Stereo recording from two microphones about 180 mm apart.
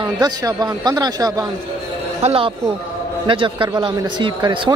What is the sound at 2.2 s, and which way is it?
A man's voice, 30° right (ahead or behind).